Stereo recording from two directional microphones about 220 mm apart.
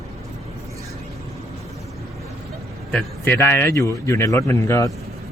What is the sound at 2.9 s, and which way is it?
A man's voice, 10° left (ahead or behind).